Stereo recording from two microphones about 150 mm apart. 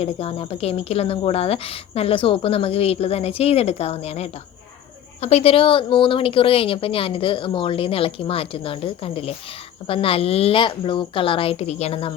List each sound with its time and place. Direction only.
0.0 s a woman's voice: 40° left (ahead or behind)